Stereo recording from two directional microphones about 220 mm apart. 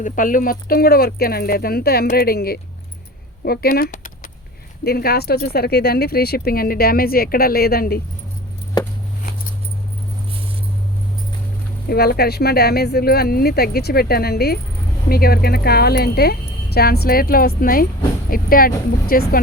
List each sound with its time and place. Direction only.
0.0 s speech: 40° left (ahead or behind)
11.9 s speech: 45° left (ahead or behind)